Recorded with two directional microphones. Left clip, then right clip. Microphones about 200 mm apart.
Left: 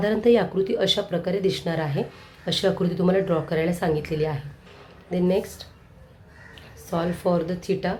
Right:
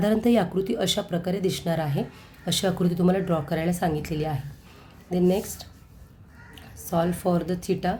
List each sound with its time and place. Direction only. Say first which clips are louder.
0.0 s speech: left 3 dB; 30° right (ahead or behind)
6.9 s speech: left 1 dB; 30° right (ahead or behind)